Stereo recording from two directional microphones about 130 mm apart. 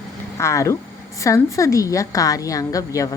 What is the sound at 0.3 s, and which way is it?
A woman's voice, 25° left (ahead or behind).